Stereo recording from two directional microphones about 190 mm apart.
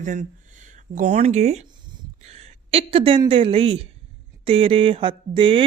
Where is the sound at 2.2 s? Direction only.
35° right (ahead or behind).